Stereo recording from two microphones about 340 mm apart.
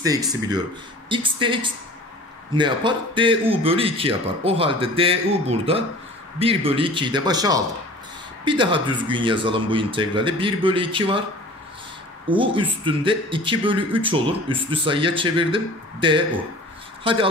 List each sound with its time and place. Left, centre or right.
0.0 s a man's voice: centre
12.3 s a man's voice: centre